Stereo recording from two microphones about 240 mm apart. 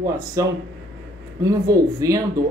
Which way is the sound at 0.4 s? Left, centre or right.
Centre.